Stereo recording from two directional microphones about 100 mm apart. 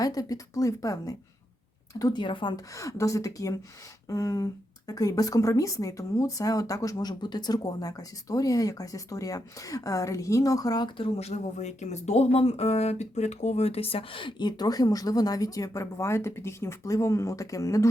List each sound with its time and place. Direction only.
0.0 s speech: 40° left (ahead or behind)
2.7 s speech: 30° left (ahead or behind); by 11.3 s 75° left (ahead or behind)
12.0 s speech: 90° left; by 17.8 s 35° left (ahead or behind)